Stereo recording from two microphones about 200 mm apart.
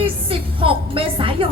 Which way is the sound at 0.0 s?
25° right (ahead or behind).